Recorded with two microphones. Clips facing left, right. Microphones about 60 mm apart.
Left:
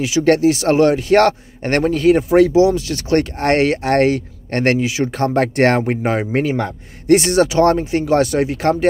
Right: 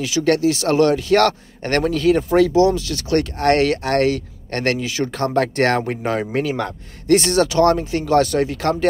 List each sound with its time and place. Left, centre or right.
0.0 s speech: left